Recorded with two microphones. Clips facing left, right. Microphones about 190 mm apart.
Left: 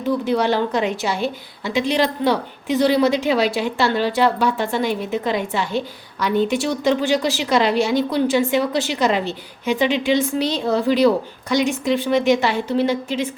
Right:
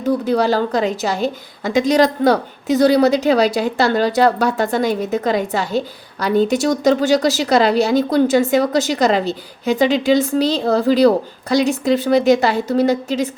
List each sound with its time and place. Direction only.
0.0 s a woman's voice: 40° right (ahead or behind)